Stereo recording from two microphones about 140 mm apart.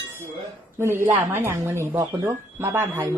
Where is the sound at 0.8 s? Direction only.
20° right (ahead or behind).